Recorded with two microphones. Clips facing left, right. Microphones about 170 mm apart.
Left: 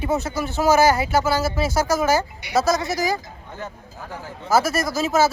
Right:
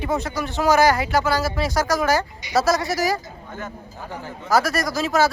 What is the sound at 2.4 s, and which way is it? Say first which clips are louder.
Speech: even; 60° left (ahead or behind).